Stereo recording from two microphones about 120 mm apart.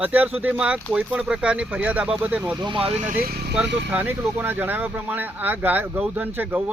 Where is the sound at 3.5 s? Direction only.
10° right (ahead or behind).